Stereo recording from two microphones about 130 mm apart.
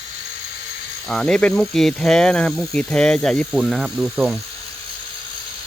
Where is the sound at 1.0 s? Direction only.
5° left (ahead or behind).